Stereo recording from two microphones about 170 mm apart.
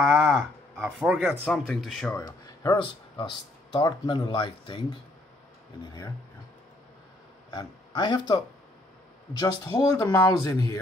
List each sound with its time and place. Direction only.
0.0 s a sound: 5° right (ahead or behind)
1.4 s speech: 5° left (ahead or behind)
2.1 s speech: 20° left (ahead or behind)
7.5 s speech: 25° left (ahead or behind)
9.4 s speech: 20° left (ahead or behind)